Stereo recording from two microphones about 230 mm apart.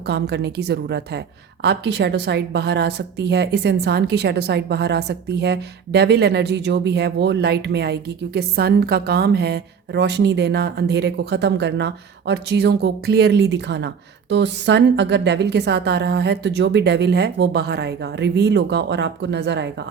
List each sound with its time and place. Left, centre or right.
0.1 s a woman's voice: right